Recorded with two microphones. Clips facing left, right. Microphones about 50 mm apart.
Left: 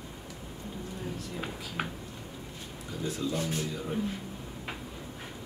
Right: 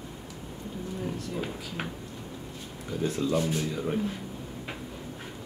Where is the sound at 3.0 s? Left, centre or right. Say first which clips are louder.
Right 5 dB; right.